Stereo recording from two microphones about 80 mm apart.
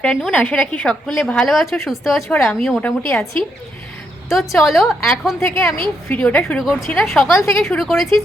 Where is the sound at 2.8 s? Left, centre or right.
Left.